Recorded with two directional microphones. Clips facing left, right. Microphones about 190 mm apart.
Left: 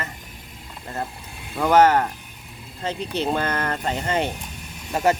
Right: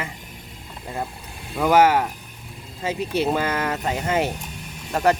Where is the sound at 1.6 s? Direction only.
10° right (ahead or behind).